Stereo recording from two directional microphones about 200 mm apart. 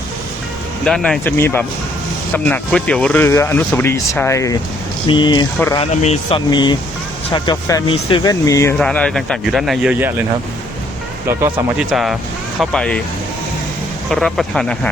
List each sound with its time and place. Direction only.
0.9 s speech: 5° left (ahead or behind)
8.8 s speech: 5° left (ahead or behind)
11.3 s speech: 15° right (ahead or behind)
11.8 s speech: centre (ahead or behind)
14.1 s speech: centre (ahead or behind)